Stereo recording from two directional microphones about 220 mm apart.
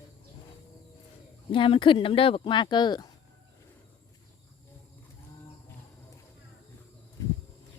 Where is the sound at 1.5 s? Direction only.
25° left (ahead or behind).